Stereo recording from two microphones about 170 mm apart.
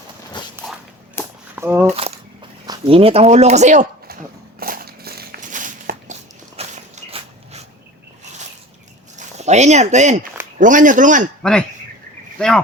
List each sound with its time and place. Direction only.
1.2 s whip: 15° left (ahead or behind)
1.5 s speech: 15° right (ahead or behind)
2.6 s speech: 35° right (ahead or behind); by 4.2 s 55° right (ahead or behind)
4.6 s a sound: 60° right (ahead or behind)
6.6 s a sound: 40° right (ahead or behind)
9.1 s speech: 40° right (ahead or behind)
12.4 s speech: 5° left (ahead or behind)